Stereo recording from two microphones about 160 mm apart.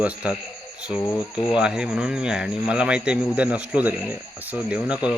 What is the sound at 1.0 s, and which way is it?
Speech, 15° left (ahead or behind).